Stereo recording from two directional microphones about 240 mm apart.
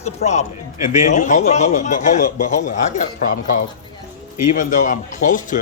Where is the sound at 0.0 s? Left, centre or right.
Left.